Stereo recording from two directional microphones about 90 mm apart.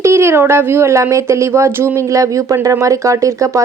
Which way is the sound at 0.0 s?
30° right (ahead or behind).